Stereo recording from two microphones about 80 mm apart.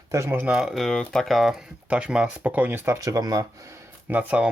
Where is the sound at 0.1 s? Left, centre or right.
Right.